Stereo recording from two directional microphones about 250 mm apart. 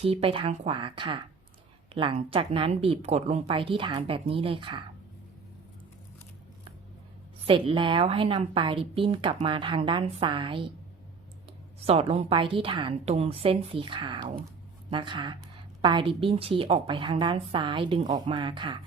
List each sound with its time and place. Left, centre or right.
0.0 s a woman's voice: right
7.4 s a woman's voice: right
11.9 s a woman's voice: right